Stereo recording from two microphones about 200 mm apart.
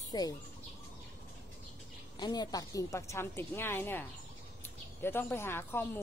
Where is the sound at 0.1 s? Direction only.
20° left (ahead or behind).